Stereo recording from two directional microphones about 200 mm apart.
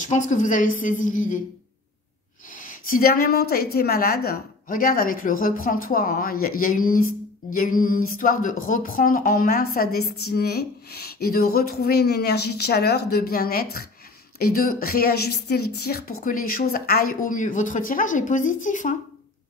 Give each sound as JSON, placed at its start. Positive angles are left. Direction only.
{"t": 0.0, "sound": "a woman's voice", "side_deg": 40}
{"t": 2.5, "sound": "a woman's voice", "side_deg": 40}